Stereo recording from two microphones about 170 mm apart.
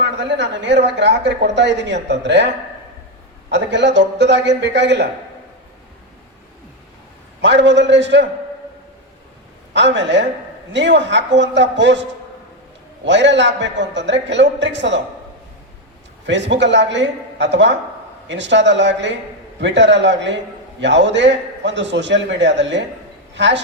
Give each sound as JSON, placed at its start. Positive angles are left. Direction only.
{"t": 0.0, "sound": "a woman's voice", "side_deg": -90}
{"t": 3.5, "sound": "a woman's voice", "side_deg": -90}
{"t": 7.4, "sound": "a woman's voice", "side_deg": -90}
{"t": 9.7, "sound": "a woman's voice", "side_deg": -90}
{"t": 13.1, "sound": "a woman's voice", "side_deg": -90}
{"t": 16.2, "sound": "a woman's voice", "side_deg": -90}